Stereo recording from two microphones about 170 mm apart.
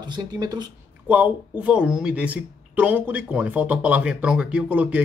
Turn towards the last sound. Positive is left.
turn(degrees=-10)  # may be behind; listen again after turning